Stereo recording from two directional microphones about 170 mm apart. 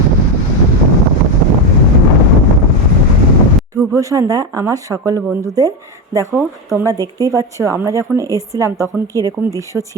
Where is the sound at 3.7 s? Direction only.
20° right (ahead or behind).